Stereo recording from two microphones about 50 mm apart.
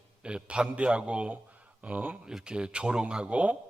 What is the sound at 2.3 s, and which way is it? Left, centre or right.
A man's voice, centre.